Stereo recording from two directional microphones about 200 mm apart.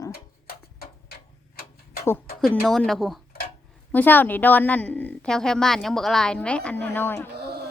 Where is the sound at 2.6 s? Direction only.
Centre (ahead or behind).